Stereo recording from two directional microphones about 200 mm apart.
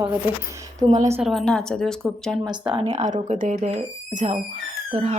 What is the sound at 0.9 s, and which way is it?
Speech, 35° right (ahead or behind).